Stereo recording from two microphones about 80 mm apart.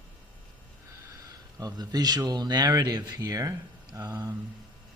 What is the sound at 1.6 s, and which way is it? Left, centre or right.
A man's voice, right.